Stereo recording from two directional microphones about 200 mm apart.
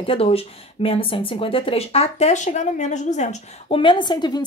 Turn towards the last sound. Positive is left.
turn(degrees=20)  # may be behind; listen again after turning